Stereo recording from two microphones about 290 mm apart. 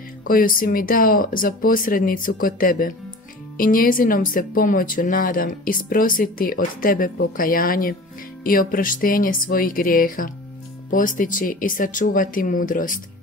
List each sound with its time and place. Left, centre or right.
0.2 s speech: left